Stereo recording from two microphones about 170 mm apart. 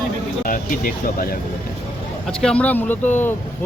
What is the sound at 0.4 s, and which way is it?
Speech, 55° left (ahead or behind).